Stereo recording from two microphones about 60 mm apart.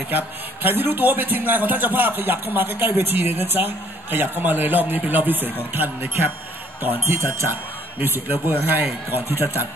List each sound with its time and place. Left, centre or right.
0.1 s a man's voice: right